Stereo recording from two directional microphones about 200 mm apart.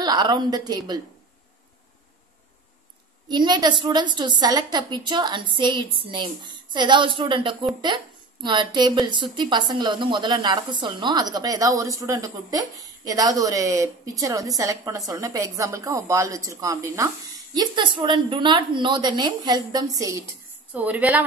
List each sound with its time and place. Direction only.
0.0 s a woman's voice: 20° right (ahead or behind)
3.3 s a woman's voice: 20° right (ahead or behind)